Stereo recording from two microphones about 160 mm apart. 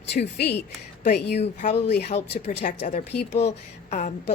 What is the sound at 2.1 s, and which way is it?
Speech, 40° left (ahead or behind).